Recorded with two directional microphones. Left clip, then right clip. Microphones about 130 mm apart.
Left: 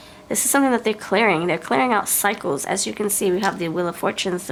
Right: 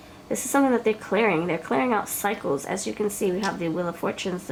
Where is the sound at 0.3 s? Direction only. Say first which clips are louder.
Left 3 dB; 35° left (ahead or behind).